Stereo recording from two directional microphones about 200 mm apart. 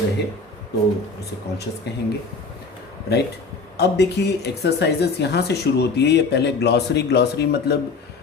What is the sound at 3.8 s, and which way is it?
A man's voice, 55° left (ahead or behind).